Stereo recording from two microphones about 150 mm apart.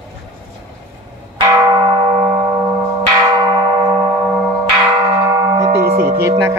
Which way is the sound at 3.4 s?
25° right (ahead or behind).